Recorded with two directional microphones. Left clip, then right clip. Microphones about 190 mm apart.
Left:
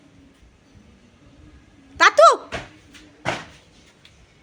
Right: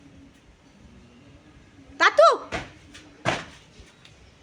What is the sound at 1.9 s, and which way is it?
Speech, 30° left (ahead or behind).